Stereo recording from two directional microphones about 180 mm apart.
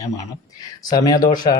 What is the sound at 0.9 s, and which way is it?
Speech, 20° left (ahead or behind).